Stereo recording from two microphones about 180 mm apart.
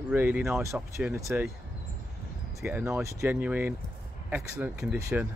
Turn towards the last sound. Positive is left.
turn(degrees=-10)  # may be behind; listen again after turning